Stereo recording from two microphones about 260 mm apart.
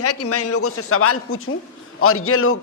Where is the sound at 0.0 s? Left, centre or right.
Left.